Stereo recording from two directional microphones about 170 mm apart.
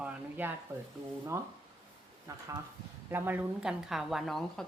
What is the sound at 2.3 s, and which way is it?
A man's voice, 20° right (ahead or behind).